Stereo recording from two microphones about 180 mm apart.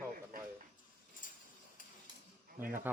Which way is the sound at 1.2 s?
50° left (ahead or behind).